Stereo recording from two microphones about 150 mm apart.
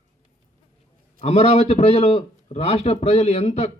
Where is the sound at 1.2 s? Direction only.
45° left (ahead or behind).